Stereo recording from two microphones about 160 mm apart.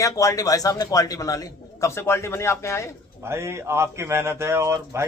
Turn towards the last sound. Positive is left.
turn(degrees=-15)  # may be behind; listen again after turning